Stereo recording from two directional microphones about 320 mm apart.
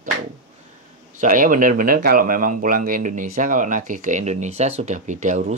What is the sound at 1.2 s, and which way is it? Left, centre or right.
Speech, right.